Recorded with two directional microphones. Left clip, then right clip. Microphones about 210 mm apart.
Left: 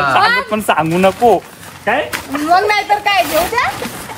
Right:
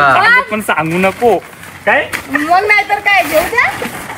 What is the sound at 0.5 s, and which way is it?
Speech, 15° left (ahead or behind).